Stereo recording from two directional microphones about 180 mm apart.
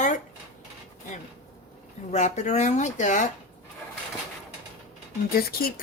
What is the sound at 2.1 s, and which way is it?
Speech, 40° left (ahead or behind).